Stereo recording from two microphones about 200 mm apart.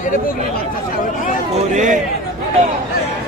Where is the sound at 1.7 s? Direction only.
40° right (ahead or behind).